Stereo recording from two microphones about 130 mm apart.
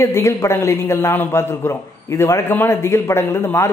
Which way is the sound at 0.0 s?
20° left (ahead or behind).